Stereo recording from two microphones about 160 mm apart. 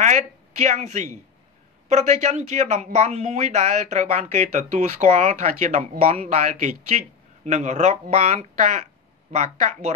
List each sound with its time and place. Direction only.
0.0 s a woman's voice: 50° right (ahead or behind)